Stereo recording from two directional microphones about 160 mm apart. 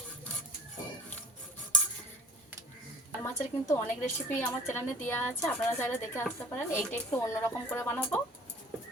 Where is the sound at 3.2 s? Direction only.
15° left (ahead or behind).